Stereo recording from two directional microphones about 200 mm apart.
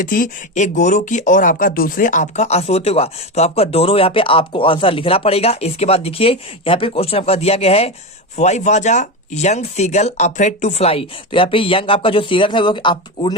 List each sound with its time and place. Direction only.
0.0 s speech: 45° left (ahead or behind); by 13.3 s 25° left (ahead or behind)